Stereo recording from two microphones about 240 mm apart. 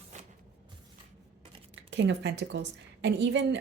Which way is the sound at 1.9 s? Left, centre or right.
Right.